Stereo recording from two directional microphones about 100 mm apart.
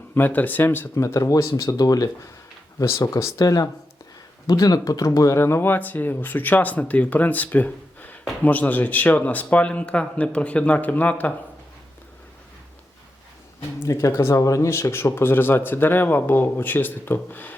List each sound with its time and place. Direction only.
0.1 s speech: 20° left (ahead or behind); by 2.0 s 40° left (ahead or behind)
2.7 s speech: 30° left (ahead or behind)
13.7 s speech: 30° left (ahead or behind)